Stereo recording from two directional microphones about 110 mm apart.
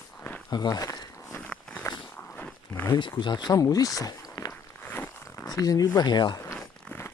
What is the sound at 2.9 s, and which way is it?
Speech, 45° left (ahead or behind).